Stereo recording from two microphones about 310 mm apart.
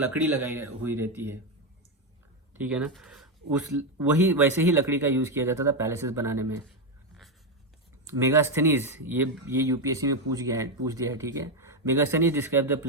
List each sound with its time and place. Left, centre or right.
0.1 s speech: centre
2.6 s speech: centre
4.3 s speech: centre
8.0 s speech: centre